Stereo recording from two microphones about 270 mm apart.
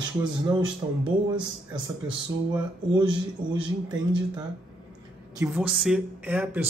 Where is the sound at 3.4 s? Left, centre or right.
Centre.